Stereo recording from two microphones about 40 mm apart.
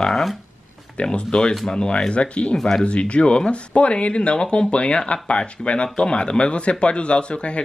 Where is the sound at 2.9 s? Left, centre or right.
Left.